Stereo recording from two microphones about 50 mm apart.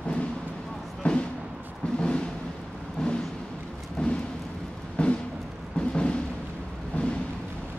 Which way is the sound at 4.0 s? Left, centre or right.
Left.